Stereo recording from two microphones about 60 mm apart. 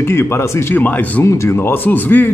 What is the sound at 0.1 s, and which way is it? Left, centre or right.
Speech, left.